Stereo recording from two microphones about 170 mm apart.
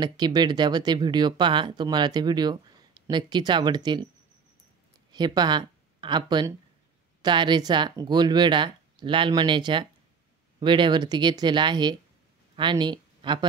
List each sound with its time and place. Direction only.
0.0 s speech: 25° right (ahead or behind)
5.1 s speech: 25° right (ahead or behind)